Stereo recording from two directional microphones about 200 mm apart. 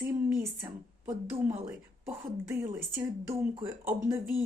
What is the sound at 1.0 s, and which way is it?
Speech, 10° right (ahead or behind).